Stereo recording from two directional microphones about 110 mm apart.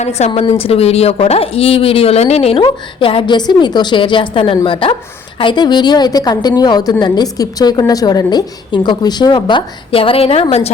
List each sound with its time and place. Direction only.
0.2 s a woman's voice: 90° left
0.6 s speech: 65° left (ahead or behind)
2.6 s a woman's voice: 50° left (ahead or behind)